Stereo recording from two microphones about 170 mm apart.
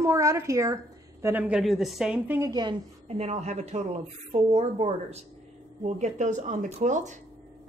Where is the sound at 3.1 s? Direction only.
40° right (ahead or behind).